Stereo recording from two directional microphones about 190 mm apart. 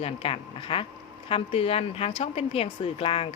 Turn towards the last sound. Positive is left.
turn(degrees=30)  # may be behind; listen again after turning